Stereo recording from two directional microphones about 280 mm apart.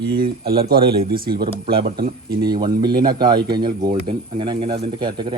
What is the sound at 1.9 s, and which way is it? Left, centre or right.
Speech, right.